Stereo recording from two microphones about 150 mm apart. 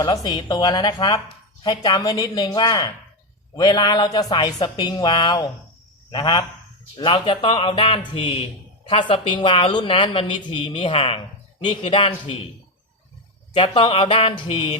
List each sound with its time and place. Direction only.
0.0 s a woman's voice: 25° left (ahead or behind)
13.5 s a woman's voice: 35° left (ahead or behind)